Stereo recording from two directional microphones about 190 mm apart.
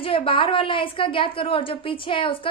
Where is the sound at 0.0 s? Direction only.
30° left (ahead or behind).